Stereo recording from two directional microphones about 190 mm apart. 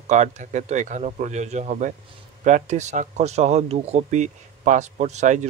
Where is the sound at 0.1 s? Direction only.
40° right (ahead or behind).